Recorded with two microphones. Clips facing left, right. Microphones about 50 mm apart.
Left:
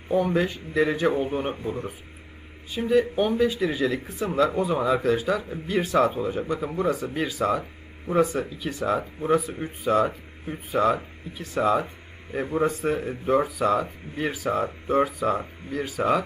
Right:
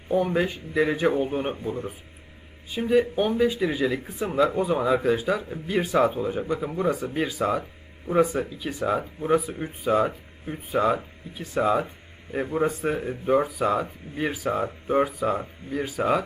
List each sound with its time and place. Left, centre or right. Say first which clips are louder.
0.2 s speech: left 1 dB; centre
2.8 s speech: even; centre